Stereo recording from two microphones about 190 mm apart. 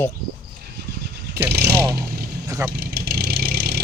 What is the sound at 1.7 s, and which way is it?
Vehicle, 15° right (ahead or behind).